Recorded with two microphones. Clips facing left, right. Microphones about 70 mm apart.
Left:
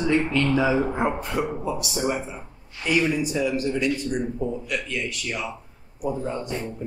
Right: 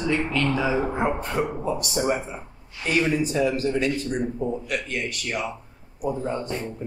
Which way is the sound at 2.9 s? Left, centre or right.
Centre.